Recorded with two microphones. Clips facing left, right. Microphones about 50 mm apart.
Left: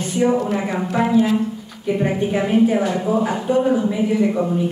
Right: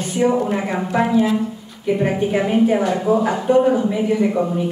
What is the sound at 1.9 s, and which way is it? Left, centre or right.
A woman's voice, centre.